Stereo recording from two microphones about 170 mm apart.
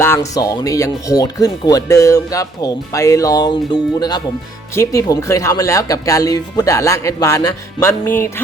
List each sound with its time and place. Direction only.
0.0 s speech: 15° left (ahead or behind)